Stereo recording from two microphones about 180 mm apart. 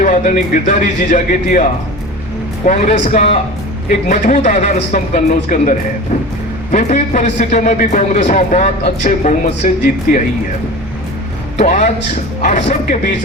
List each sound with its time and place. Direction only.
0.0 s a man's voice: 45° left (ahead or behind)
2.6 s a man's voice: 40° left (ahead or behind)
11.5 s a man's voice: 40° left (ahead or behind)